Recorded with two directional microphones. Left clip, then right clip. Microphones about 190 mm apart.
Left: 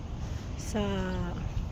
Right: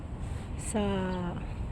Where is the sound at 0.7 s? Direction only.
20° right (ahead or behind).